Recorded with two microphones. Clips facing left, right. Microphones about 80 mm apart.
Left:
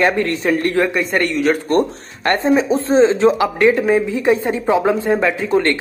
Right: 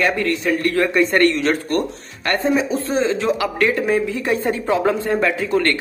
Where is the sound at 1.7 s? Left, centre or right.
Left.